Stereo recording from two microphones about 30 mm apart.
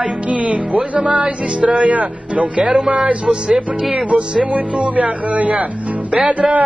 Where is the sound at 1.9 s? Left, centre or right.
Right.